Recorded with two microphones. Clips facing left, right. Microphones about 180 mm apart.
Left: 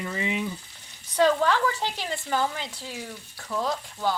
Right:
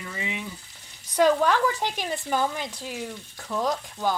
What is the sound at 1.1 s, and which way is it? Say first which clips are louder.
A woman's voice: right 1 dB; 15° right (ahead or behind).